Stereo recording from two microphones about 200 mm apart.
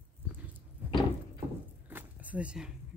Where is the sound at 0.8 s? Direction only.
10° right (ahead or behind).